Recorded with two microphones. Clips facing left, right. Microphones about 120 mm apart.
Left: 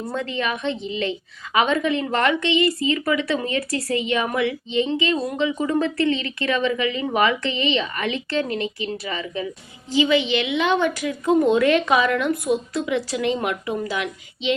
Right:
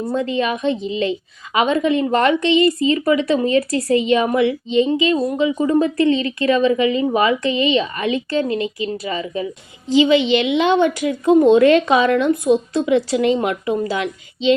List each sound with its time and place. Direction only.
0.1 s a woman's voice: 20° right (ahead or behind)
6.1 s a woman's voice: 30° right (ahead or behind)